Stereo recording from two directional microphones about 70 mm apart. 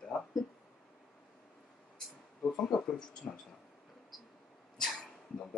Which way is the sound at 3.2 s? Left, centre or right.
Centre.